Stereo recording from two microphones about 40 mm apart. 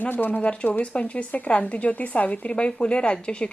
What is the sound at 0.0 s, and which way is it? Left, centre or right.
Speech, left.